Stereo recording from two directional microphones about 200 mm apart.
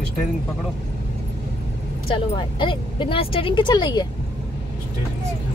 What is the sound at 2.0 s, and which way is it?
Speech, 25° left (ahead or behind).